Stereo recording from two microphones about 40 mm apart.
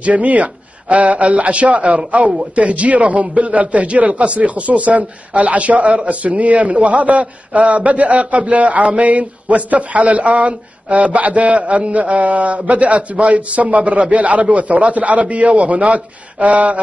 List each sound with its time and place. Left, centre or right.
0.0 s a man's voice: right